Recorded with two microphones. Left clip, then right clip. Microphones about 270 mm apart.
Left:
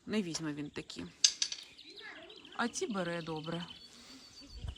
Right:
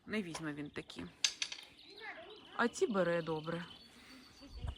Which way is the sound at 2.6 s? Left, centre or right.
Centre.